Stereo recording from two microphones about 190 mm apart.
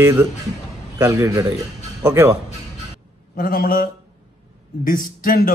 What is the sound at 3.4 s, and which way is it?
Speech, 50° left (ahead or behind).